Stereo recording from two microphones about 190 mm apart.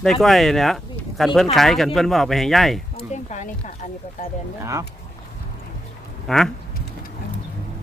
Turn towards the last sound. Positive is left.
turn(degrees=5)  # may be behind; listen again after turning